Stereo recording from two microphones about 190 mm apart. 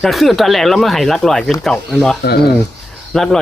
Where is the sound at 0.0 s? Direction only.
Centre (ahead or behind).